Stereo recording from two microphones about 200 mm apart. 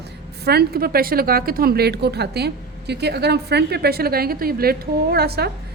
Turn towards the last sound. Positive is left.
turn(degrees=-50)  # may be behind; listen again after turning